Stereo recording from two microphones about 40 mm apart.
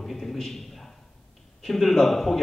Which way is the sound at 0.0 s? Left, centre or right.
Centre.